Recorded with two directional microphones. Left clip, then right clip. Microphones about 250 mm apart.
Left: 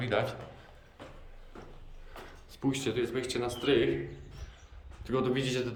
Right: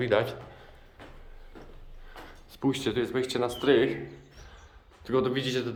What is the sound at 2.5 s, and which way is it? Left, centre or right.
Speech, centre.